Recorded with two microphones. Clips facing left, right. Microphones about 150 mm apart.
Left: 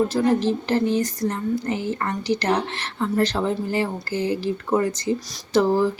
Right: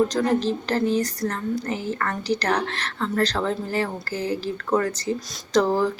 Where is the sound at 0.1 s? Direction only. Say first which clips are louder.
Left 2 dB; 10° left (ahead or behind).